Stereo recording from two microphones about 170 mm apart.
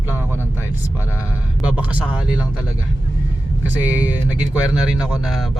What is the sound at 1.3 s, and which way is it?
Speech, 10° right (ahead or behind).